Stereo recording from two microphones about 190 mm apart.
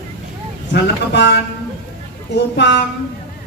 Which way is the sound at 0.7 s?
65° left (ahead or behind).